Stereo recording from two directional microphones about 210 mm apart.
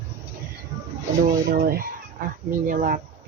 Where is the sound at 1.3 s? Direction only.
45° right (ahead or behind).